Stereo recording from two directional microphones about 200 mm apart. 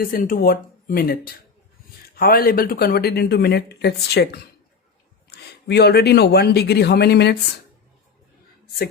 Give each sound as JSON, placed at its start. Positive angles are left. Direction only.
{"t": 0.0, "sound": "speech", "side_deg": 45}
{"t": 5.6, "sound": "speech", "side_deg": 55}